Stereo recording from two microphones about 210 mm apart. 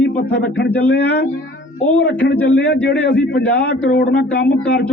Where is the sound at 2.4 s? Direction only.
50° left (ahead or behind).